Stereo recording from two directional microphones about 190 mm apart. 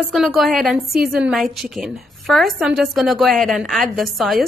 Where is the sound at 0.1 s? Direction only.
Centre (ahead or behind).